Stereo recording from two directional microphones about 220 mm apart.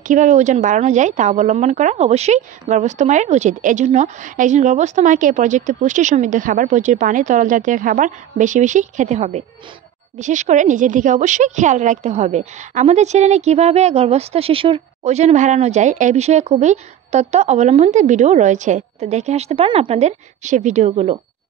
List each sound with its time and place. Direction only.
0.1 s a woman's voice: 35° right (ahead or behind)